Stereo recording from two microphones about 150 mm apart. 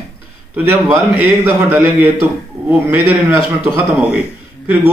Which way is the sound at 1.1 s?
15° right (ahead or behind).